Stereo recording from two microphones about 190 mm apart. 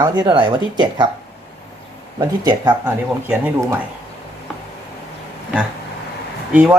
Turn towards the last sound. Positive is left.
turn(degrees=-10)  # may be behind; listen again after turning